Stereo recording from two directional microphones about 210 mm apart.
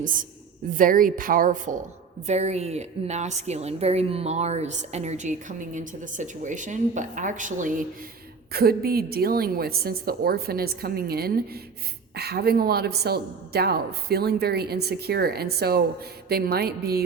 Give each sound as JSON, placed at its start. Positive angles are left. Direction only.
{"t": 0.0, "sound": "a woman's voice", "side_deg": -40}